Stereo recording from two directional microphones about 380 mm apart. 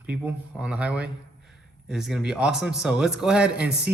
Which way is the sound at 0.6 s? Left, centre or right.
Centre.